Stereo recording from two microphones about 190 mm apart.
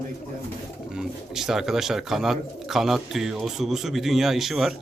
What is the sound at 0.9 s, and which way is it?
Speech, centre (ahead or behind).